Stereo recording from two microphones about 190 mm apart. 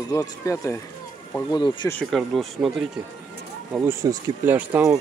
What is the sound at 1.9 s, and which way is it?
Speech, 5° left (ahead or behind).